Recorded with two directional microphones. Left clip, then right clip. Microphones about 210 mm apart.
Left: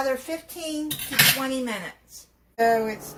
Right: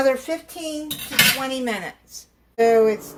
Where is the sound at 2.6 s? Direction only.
35° right (ahead or behind).